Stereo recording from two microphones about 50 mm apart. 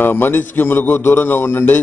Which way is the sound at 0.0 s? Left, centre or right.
Left.